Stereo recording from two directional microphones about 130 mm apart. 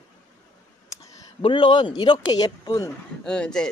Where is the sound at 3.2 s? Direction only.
5° left (ahead or behind).